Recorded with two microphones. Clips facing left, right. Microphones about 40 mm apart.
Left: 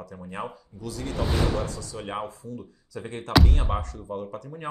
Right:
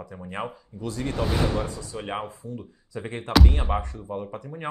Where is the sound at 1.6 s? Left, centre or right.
Right.